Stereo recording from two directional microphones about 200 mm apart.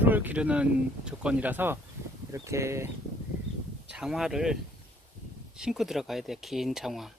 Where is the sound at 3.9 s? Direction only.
Centre (ahead or behind).